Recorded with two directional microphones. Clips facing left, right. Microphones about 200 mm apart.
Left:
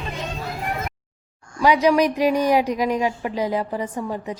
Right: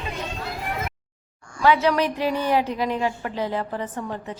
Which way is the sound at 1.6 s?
15° left (ahead or behind).